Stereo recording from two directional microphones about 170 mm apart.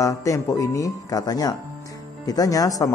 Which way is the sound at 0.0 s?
20° left (ahead or behind).